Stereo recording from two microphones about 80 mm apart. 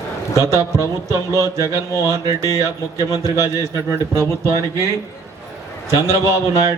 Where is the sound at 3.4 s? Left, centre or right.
Right.